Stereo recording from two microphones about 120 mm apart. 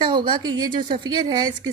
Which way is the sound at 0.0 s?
40° right (ahead or behind).